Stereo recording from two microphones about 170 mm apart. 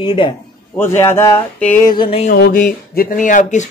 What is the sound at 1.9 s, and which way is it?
Speech, 30° left (ahead or behind).